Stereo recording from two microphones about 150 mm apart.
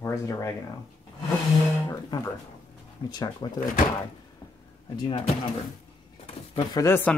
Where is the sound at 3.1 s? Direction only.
25° left (ahead or behind).